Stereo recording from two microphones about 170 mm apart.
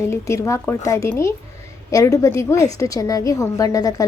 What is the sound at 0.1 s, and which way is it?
A woman's voice, 20° left (ahead or behind).